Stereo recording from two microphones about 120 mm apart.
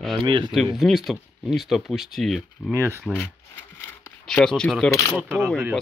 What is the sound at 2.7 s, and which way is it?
Speech, 25° right (ahead or behind).